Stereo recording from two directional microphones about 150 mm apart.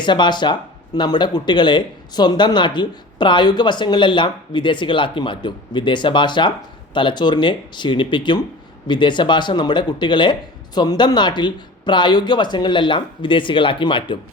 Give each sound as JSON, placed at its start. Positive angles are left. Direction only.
{"t": 0.0, "sound": "speech", "side_deg": 30}